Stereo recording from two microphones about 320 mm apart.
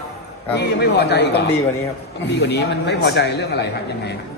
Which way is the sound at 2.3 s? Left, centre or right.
Left.